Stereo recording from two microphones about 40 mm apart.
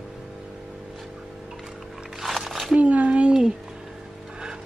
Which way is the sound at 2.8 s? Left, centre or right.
Right.